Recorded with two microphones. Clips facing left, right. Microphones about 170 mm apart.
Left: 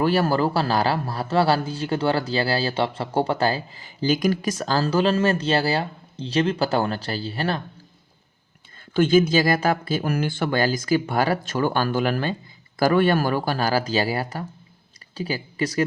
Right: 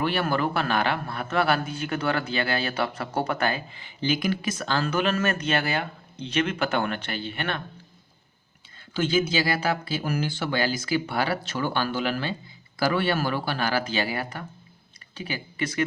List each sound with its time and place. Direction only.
0.0 s a man's voice: 40° left (ahead or behind)
8.9 s a man's voice: 50° left (ahead or behind)